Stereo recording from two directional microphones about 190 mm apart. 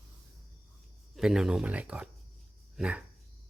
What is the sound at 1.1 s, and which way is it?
Speech, 5° right (ahead or behind).